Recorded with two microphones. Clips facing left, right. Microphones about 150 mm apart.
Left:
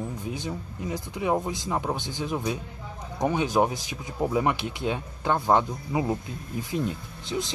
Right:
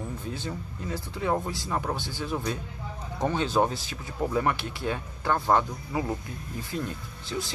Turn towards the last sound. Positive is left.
turn(degrees=20)  # may be behind; listen again after turning